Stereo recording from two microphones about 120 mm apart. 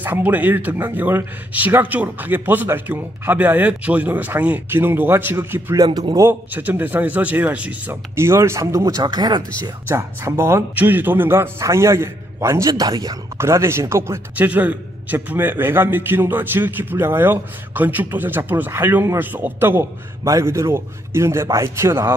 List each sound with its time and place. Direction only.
0.0 s speech: 15° right (ahead or behind)
5.9 s a man's voice: 40° right (ahead or behind)
6.1 s a man's voice: 15° right (ahead or behind); by 9.4 s 35° right (ahead or behind)
9.8 s a man's voice: 20° right (ahead or behind)